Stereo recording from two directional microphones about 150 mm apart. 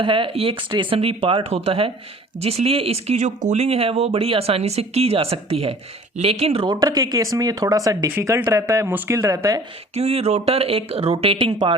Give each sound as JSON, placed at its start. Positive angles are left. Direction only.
{"t": 0.0, "sound": "speech", "side_deg": -35}
{"t": 9.9, "sound": "speech", "side_deg": -45}